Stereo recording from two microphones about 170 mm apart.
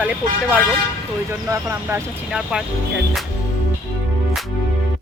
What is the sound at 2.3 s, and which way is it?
Speech, 5° right (ahead or behind).